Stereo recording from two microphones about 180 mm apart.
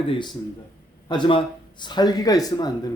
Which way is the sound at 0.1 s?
25° left (ahead or behind).